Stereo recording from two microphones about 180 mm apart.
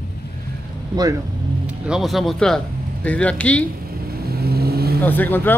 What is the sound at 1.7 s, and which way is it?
Speech, 5° right (ahead or behind).